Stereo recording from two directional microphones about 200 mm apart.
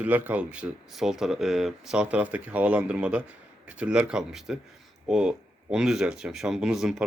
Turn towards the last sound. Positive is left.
turn(degrees=0)  # may be behind; listen again after turning